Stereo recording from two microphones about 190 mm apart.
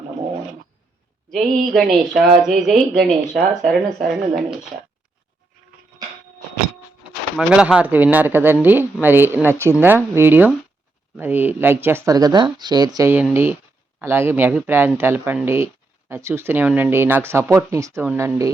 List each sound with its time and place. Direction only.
1.3 s speech: centre (ahead or behind)
7.3 s speech: 5° right (ahead or behind)